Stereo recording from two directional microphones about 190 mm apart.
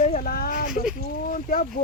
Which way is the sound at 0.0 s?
45° left (ahead or behind).